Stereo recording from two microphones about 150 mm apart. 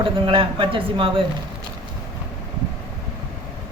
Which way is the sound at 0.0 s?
35° right (ahead or behind).